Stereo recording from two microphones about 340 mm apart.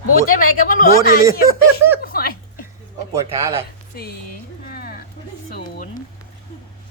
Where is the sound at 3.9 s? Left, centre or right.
Left.